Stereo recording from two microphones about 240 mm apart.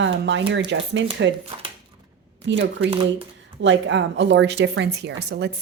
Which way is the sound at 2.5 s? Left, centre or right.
Right.